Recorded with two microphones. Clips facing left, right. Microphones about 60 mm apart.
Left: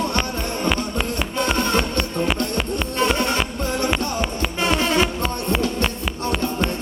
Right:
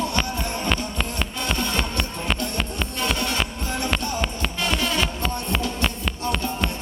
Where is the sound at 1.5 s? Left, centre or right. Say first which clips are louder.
Left 5 dB; left.